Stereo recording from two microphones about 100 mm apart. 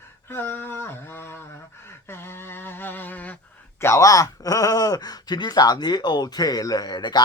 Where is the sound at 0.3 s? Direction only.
20° left (ahead or behind).